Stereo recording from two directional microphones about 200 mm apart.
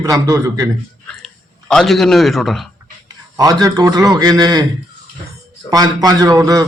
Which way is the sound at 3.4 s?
15° right (ahead or behind).